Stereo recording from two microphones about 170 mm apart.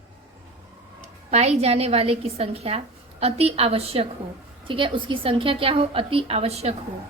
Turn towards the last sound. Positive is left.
turn(degrees=-35)  # may be behind; listen again after turning